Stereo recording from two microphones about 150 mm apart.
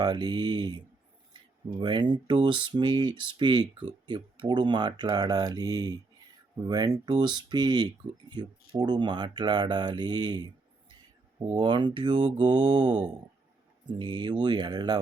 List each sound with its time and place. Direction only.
0.0 s speech: 30° right (ahead or behind)
1.8 s speech: 30° right (ahead or behind)